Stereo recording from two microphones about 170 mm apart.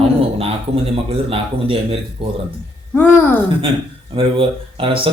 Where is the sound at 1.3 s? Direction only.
35° right (ahead or behind).